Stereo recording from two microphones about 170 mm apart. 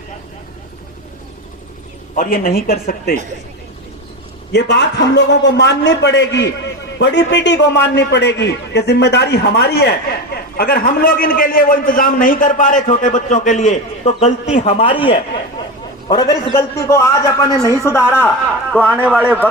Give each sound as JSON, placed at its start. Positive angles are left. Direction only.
{"t": 2.1, "sound": "speech", "side_deg": 60}
{"t": 4.5, "sound": "a man's voice", "side_deg": 90}
{"t": 18.9, "sound": "speech", "side_deg": -10}